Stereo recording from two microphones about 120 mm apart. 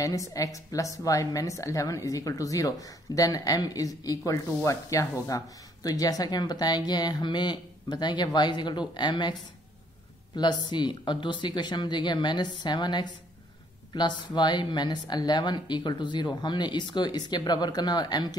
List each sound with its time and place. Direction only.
0.0 s a woman's voice: 30° left (ahead or behind)
10.3 s speech: 40° left (ahead or behind)